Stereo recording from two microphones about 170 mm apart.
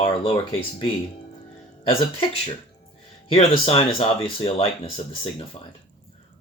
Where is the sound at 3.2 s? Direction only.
35° left (ahead or behind).